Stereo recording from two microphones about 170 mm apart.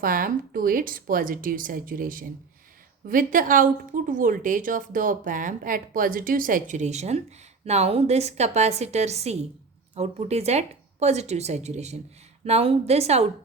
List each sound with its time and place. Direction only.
0.0 s a woman's voice: 55° right (ahead or behind); by 13.2 s 40° right (ahead or behind)